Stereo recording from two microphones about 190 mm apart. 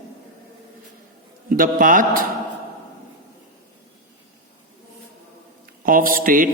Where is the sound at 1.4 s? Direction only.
45° right (ahead or behind).